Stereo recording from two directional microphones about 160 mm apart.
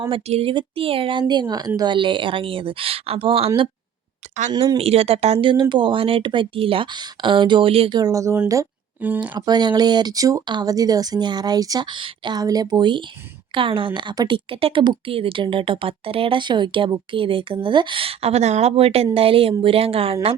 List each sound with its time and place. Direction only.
0.1 s a woman's voice: 35° right (ahead or behind)
4.8 s a woman's voice: 40° right (ahead or behind); by 9.3 s 10° right (ahead or behind)
9.3 s a woman's voice: 25° right (ahead or behind)